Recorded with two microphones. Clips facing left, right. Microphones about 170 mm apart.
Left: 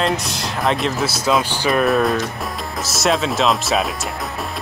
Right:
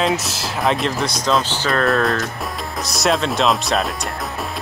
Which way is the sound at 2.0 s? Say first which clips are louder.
Left 1 dB; centre (ahead or behind).